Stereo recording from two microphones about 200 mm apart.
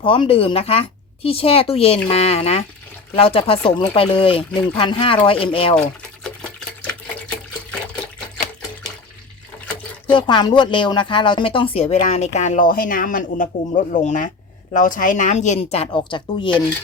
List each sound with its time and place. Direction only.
0.0 s a woman's voice: 25° left (ahead or behind)
6.8 s water: 5° left (ahead or behind)
10.1 s speech: 25° left (ahead or behind)